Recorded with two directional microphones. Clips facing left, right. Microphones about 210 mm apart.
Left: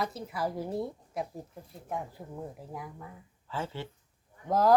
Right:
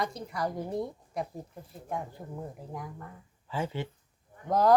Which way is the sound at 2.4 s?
5° left (ahead or behind).